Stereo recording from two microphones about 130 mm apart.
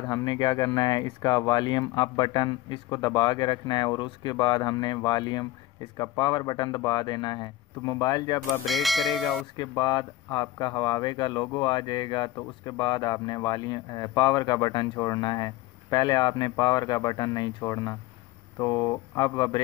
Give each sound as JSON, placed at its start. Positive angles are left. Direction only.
{"t": 0.0, "sound": "speech", "side_deg": 30}
{"t": 8.6, "sound": "speech", "side_deg": 0}
{"t": 9.6, "sound": "speech", "side_deg": 30}